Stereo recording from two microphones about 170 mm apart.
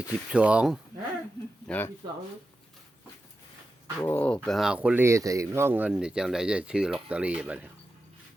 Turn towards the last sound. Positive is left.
turn(degrees=-10)  # may be behind; listen again after turning